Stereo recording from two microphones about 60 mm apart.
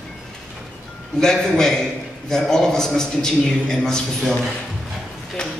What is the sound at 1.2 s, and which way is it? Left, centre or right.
A man's voice, centre.